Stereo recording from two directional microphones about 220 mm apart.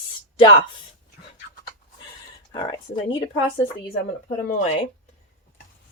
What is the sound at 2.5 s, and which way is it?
Speech, 20° left (ahead or behind).